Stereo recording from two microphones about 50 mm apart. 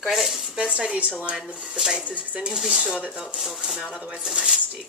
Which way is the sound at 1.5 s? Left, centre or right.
Centre.